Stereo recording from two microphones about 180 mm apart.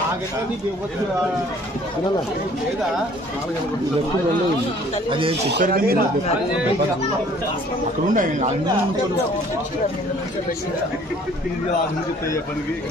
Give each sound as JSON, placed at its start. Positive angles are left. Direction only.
{"t": 5.6, "sound": "speech", "side_deg": -55}
{"t": 8.1, "sound": "speech", "side_deg": -45}